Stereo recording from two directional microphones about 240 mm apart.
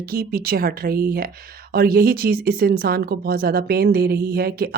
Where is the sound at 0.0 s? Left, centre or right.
Right.